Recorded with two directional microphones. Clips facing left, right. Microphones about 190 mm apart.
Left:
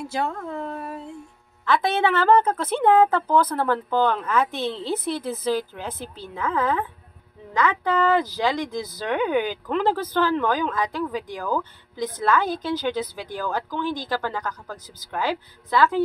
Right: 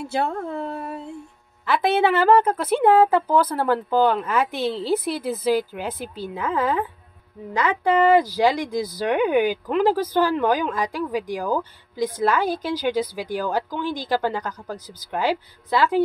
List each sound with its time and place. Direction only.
0.0 s speech: 30° right (ahead or behind)
1.7 s a woman's voice: 10° right (ahead or behind)